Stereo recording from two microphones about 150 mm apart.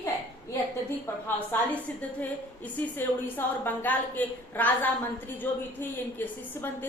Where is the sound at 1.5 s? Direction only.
15° left (ahead or behind).